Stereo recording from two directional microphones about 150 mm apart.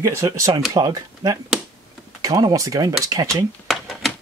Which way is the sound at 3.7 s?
Centre (ahead or behind).